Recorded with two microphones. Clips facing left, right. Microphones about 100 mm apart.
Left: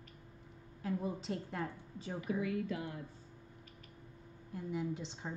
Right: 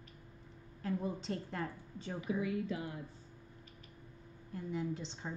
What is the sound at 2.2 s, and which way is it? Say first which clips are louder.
Speech: even; 50° left (ahead or behind).